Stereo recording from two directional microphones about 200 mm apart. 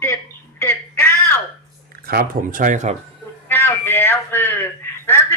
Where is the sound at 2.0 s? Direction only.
45° right (ahead or behind).